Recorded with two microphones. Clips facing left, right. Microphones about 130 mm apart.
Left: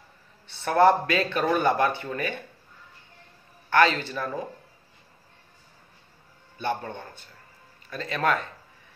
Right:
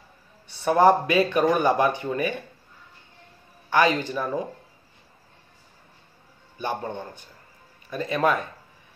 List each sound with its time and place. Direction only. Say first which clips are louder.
0.5 s speech: right 1 dB; 15° right (ahead or behind)
3.7 s speech: right 1 dB; 15° right (ahead or behind)
6.6 s speech: right 1 dB; 15° right (ahead or behind)